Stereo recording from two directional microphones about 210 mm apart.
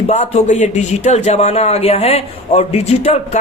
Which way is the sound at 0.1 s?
30° left (ahead or behind).